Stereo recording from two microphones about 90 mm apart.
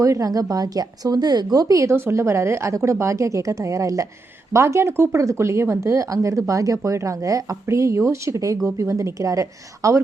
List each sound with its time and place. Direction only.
0.0 s a woman's voice: 40° right (ahead or behind)